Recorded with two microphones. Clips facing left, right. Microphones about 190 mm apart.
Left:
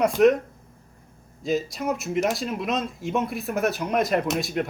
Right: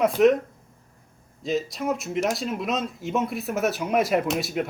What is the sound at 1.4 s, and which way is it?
Speech, centre (ahead or behind).